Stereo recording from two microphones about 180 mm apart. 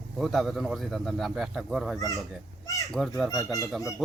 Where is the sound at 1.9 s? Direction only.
20° left (ahead or behind).